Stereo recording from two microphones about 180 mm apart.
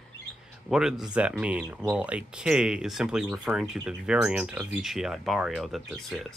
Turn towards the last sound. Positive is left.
turn(degrees=0)  # may be behind; listen again after turning